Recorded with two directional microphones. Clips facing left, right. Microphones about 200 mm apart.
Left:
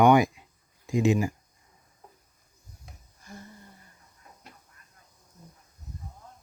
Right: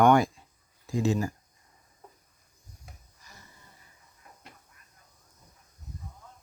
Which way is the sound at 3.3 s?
55° left (ahead or behind).